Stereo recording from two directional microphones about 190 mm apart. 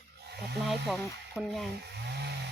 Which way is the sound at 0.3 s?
60° right (ahead or behind).